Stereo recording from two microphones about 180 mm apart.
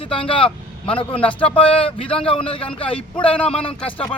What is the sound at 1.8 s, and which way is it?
A man's voice, 30° left (ahead or behind).